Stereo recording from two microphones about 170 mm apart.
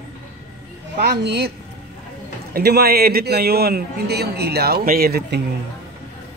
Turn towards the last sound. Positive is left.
turn(degrees=-65)  # may be behind; listen again after turning